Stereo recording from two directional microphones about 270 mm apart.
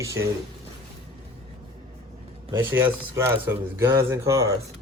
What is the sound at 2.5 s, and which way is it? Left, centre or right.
Speech, centre.